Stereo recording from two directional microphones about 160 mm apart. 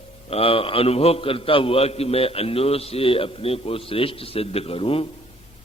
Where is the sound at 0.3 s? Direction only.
35° left (ahead or behind).